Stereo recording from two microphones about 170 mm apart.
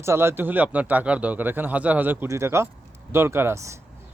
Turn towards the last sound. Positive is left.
turn(degrees=-15)  # may be behind; listen again after turning